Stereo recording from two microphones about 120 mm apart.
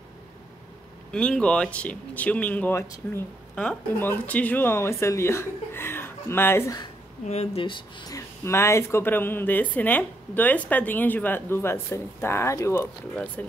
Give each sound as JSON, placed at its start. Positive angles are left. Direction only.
{"t": 1.1, "sound": "speech", "side_deg": 10}
{"t": 7.2, "sound": "speech", "side_deg": 65}
{"t": 8.1, "sound": "speech", "side_deg": 20}
{"t": 13.1, "sound": "speech", "side_deg": 10}